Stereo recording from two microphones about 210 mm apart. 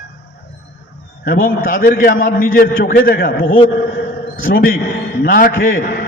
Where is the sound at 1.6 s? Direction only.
45° left (ahead or behind).